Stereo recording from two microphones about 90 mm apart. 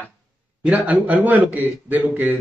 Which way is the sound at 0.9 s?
15° right (ahead or behind).